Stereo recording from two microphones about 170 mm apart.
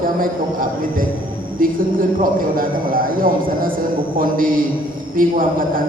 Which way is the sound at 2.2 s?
55° right (ahead or behind).